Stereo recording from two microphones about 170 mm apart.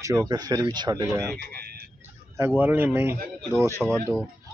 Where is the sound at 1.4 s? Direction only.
65° right (ahead or behind).